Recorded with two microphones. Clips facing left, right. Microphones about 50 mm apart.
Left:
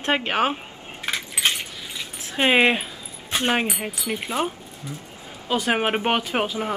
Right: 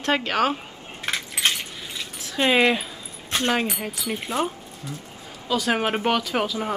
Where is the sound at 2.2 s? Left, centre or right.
Left.